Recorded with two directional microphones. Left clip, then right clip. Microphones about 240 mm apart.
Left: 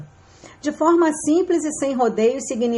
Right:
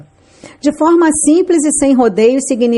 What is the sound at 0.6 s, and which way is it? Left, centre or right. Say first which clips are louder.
A woman's voice: right 7 dB; right.